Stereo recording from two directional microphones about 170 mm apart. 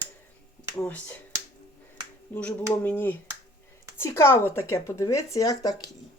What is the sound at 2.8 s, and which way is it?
Speech, 10° left (ahead or behind).